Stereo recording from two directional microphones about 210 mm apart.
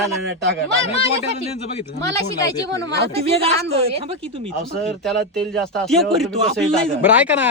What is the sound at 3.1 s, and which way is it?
Speech, 30° right (ahead or behind).